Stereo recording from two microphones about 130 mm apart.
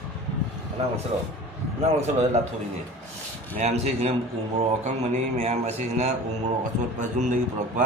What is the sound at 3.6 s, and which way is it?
Speech, 55° right (ahead or behind).